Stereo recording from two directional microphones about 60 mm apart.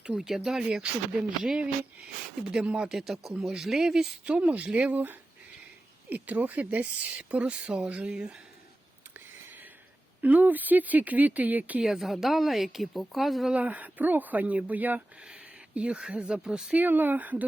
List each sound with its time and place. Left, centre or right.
0.1 s speech: centre
4.3 s speech: right
10.2 s speech: right
11.8 s speech: centre
13.5 s speech: right
15.3 s speech: centre
16.7 s speech: right